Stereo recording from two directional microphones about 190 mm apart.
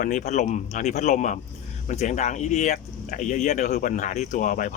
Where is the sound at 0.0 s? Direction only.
40° left (ahead or behind).